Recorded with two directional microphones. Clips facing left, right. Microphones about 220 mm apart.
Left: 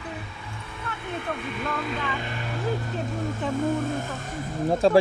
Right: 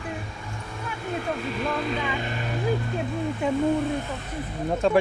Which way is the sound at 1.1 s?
35° right (ahead or behind).